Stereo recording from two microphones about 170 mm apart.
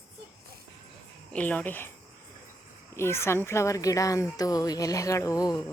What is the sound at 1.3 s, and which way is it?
Speech, 10° left (ahead or behind).